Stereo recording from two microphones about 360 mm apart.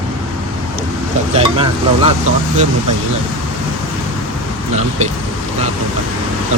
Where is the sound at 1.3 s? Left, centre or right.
Centre.